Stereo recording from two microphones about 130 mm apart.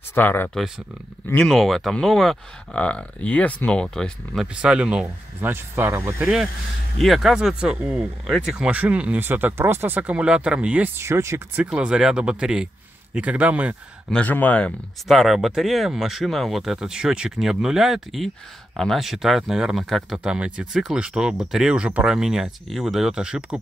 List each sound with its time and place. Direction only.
0.1 s speech: 15° left (ahead or behind)
1.4 s speech: centre (ahead or behind)
4.6 s speech: 10° right (ahead or behind)
6.2 s speech: 5° right (ahead or behind)
14.1 s speech: 10° left (ahead or behind)
15.0 s speech: centre (ahead or behind)